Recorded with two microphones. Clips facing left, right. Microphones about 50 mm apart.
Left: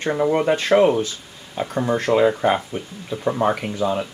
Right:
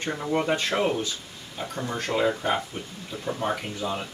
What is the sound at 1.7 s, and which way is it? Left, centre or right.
Speech, left.